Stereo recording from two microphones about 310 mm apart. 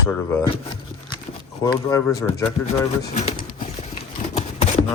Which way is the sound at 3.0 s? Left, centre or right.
Centre.